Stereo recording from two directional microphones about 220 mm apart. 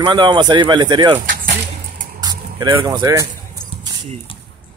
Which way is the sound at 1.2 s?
40° right (ahead or behind).